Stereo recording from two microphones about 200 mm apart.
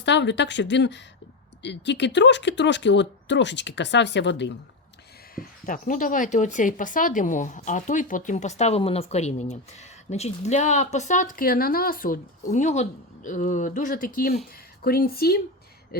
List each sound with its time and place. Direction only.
0.0 s speech: 60° left (ahead or behind)
5.3 s speech: 45° left (ahead or behind)